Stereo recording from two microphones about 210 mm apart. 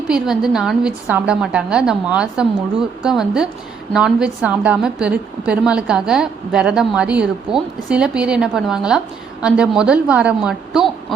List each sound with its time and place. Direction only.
0.1 s a woman's voice: centre (ahead or behind)